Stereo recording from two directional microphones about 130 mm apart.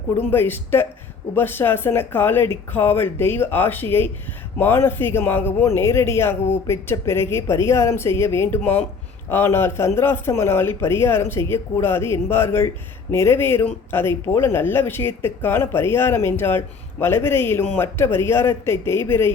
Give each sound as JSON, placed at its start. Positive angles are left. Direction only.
{"t": 0.3, "sound": "speech", "side_deg": 15}